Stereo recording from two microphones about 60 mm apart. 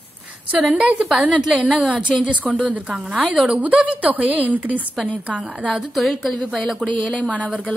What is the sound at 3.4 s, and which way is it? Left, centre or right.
A woman's voice, right.